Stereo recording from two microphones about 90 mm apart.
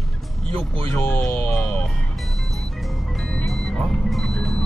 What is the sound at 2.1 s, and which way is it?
Music, centre (ahead or behind).